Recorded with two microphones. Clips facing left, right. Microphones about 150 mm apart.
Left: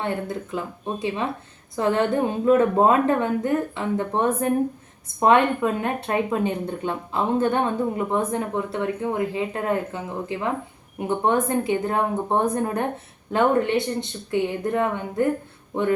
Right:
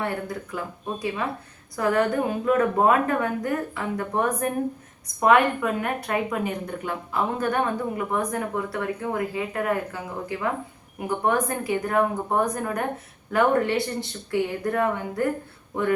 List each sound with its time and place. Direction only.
0.0 s a woman's voice: 25° left (ahead or behind)